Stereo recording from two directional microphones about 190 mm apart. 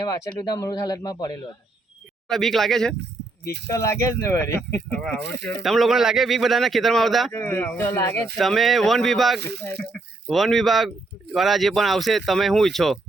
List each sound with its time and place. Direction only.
0.3 s speech: 20° left (ahead or behind)
2.2 s speech: centre (ahead or behind)
3.7 s speech: 15° left (ahead or behind)
7.3 s speech: 10° left (ahead or behind)
8.4 s speech: centre (ahead or behind)
9.4 s speech: 60° right (ahead or behind)
10.2 s speech: centre (ahead or behind)